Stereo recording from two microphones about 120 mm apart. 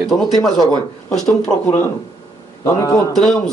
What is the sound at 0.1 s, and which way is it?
Speech, 5° left (ahead or behind).